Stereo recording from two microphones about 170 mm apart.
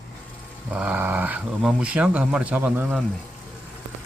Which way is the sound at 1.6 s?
5° right (ahead or behind).